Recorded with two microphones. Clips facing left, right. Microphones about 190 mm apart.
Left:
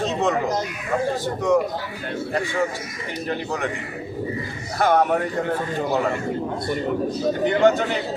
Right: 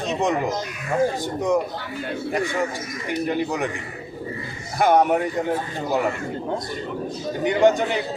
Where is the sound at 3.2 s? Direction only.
15° right (ahead or behind).